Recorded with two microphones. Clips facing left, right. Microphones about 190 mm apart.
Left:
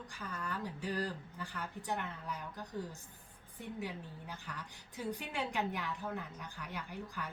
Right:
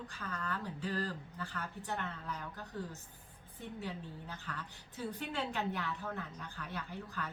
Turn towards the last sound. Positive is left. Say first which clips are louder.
# right 1 dB
turn(degrees=15)  # may be behind; listen again after turning